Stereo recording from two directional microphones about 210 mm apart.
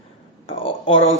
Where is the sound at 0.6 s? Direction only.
25° left (ahead or behind).